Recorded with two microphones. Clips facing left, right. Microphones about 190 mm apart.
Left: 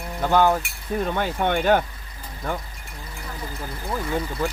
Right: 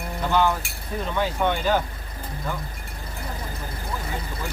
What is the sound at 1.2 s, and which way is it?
Speech, 60° left (ahead or behind).